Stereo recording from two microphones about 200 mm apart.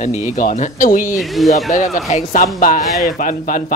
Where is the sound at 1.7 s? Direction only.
40° left (ahead or behind).